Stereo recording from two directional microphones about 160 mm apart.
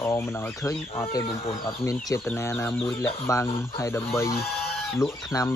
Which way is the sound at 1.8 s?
20° left (ahead or behind).